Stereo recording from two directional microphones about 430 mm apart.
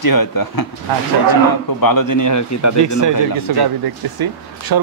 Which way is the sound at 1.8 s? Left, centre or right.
Left.